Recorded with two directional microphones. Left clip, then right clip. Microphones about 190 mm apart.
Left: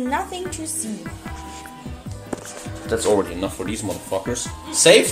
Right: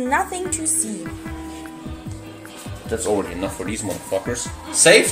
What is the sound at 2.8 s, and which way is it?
Speech, 15° left (ahead or behind).